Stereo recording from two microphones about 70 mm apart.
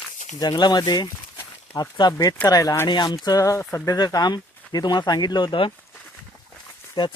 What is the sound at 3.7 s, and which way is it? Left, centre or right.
Speech, left.